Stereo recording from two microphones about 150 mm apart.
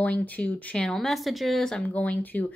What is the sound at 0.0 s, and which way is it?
Speech, 10° left (ahead or behind).